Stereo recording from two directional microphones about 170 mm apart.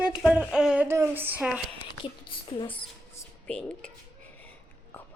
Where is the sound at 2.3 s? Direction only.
30° left (ahead or behind).